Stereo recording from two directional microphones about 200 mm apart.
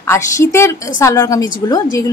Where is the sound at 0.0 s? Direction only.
15° left (ahead or behind).